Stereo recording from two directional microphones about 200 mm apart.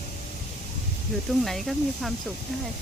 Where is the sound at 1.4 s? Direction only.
Centre (ahead or behind).